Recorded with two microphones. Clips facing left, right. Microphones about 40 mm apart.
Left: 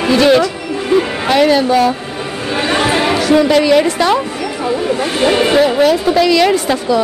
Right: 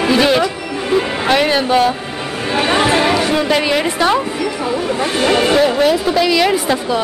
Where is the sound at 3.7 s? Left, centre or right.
Centre.